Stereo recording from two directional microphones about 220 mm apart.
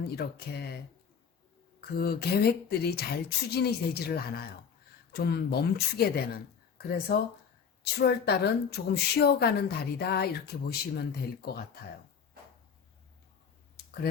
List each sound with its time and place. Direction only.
0.2 s speech: 45° left (ahead or behind)
1.8 s speech: 45° left (ahead or behind)